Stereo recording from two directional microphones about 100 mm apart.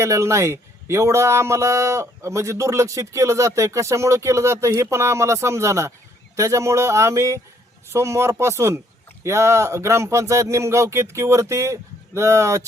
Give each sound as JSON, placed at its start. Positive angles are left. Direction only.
{"t": 0.0, "sound": "a man's voice", "side_deg": -30}